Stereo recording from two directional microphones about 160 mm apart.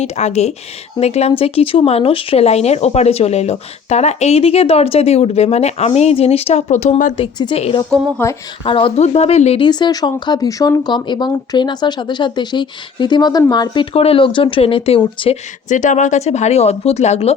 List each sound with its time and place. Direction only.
0.0 s speech: 45° left (ahead or behind)
7.3 s speech: 30° left (ahead or behind)
8.2 s speech: 10° left (ahead or behind)
8.6 s speech: 35° left (ahead or behind)
9.6 s speech: 25° left (ahead or behind)
15.7 s speech: 50° left (ahead or behind)